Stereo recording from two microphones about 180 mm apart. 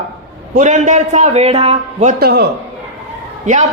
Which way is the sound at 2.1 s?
60° right (ahead or behind).